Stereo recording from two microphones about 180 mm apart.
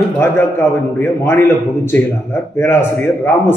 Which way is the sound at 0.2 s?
10° left (ahead or behind).